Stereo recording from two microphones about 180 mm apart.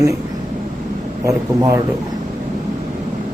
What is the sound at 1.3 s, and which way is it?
Speech, 15° right (ahead or behind).